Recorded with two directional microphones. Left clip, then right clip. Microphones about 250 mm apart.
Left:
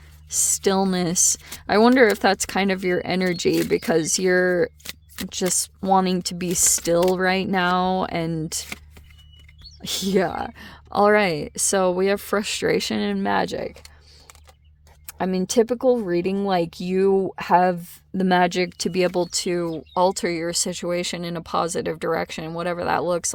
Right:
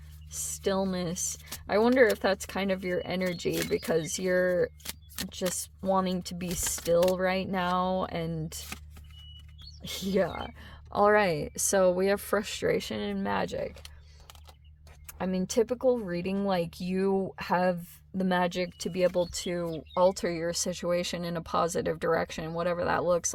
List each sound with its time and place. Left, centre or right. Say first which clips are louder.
0.3 s speech: left 10 dB; left
9.8 s speech: left 7 dB; left
15.0 s speech: left 8 dB; left